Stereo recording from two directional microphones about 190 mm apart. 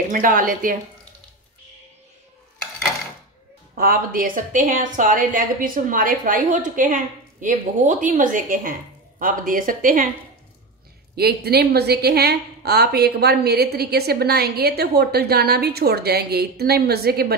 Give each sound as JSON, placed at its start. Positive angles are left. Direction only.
{"t": 0.1, "sound": "a woman's voice", "side_deg": -45}
{"t": 3.7, "sound": "a woman's voice", "side_deg": -50}
{"t": 11.1, "sound": "a woman's voice", "side_deg": -55}